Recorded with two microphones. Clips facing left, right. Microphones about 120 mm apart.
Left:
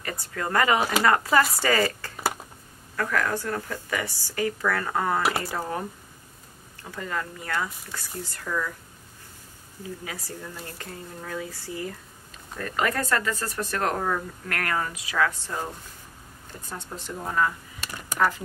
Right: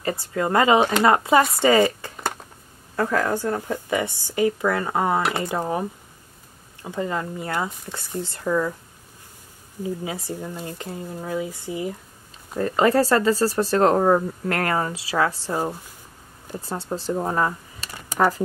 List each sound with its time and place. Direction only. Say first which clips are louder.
0.0 s speech: right 7 dB; 25° right (ahead or behind)
9.8 s speech: right 8 dB; 25° right (ahead or behind)